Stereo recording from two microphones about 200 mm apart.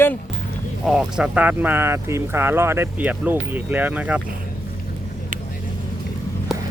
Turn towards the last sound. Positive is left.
turn(degrees=0)  # may be behind; listen again after turning